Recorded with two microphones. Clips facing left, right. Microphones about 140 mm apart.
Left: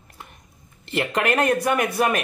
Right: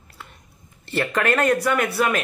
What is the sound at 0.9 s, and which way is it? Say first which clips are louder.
Speech: right 1 dB; 15° left (ahead or behind).